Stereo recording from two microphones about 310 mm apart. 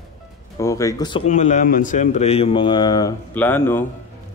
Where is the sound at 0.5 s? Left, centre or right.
Centre.